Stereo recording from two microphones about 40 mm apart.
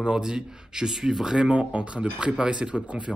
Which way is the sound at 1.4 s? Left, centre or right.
Right.